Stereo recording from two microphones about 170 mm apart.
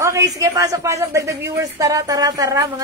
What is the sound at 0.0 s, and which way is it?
Speech, 20° right (ahead or behind).